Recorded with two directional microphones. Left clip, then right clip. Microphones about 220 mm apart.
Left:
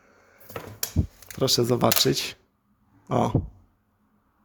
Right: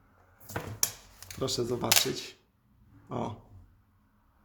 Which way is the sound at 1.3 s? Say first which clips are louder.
Left 9 dB; 40° left (ahead or behind).